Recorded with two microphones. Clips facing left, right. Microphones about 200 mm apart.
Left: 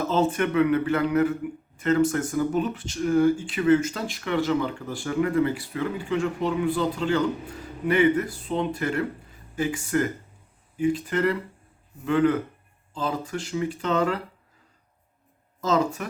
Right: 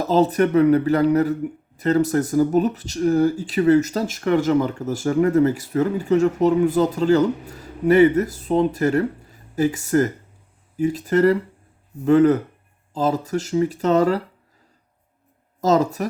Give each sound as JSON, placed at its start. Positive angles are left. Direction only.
{"t": 0.0, "sound": "a man's voice", "side_deg": -35}
{"t": 15.6, "sound": "a man's voice", "side_deg": -40}